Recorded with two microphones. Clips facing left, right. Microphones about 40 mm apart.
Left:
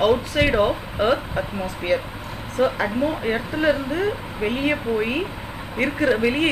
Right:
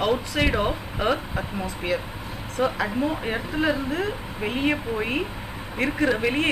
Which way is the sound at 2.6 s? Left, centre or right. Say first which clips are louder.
Left 4 dB; left.